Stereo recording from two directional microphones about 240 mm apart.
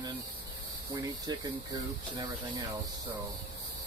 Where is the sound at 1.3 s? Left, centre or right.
Centre.